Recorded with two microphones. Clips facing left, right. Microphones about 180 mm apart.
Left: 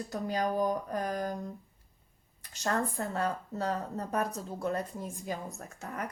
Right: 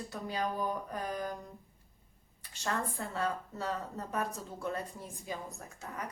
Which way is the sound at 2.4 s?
40° left (ahead or behind).